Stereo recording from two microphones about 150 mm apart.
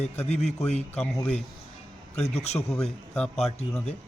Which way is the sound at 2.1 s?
45° left (ahead or behind).